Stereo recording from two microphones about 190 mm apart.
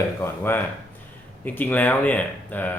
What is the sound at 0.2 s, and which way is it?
Speech, 10° left (ahead or behind).